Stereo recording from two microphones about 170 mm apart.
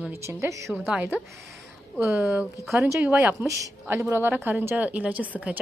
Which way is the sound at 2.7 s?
15° right (ahead or behind).